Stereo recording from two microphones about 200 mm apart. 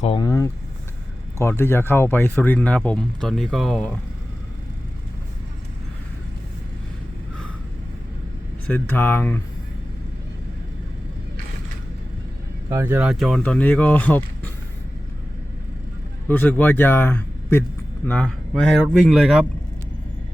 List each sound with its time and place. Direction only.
0.0 s speech: 25° left (ahead or behind); by 3.9 s 5° left (ahead or behind)
8.6 s speech: 10° left (ahead or behind)
12.7 s speech: 10° right (ahead or behind); by 14.2 s 10° left (ahead or behind)
16.3 s speech: 10° left (ahead or behind)